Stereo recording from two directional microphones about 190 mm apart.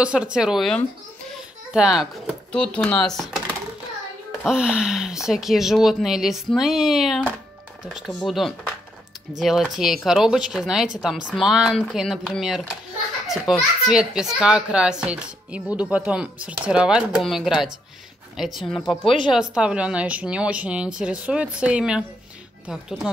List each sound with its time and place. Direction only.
0.0 s a child's voice: 5° right (ahead or behind)
19.0 s speech: 25° left (ahead or behind)
19.5 s a woman's voice: 5° right (ahead or behind)